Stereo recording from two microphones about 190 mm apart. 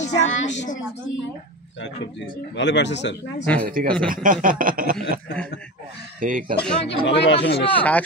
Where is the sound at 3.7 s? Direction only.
45° right (ahead or behind).